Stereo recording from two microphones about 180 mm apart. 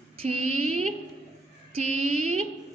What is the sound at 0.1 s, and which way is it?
Speech, 35° right (ahead or behind).